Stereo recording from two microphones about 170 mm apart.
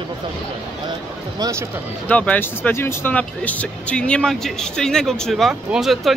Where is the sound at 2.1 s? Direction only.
10° left (ahead or behind).